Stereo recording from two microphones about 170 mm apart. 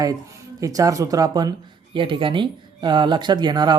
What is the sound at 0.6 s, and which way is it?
Speech, 20° right (ahead or behind).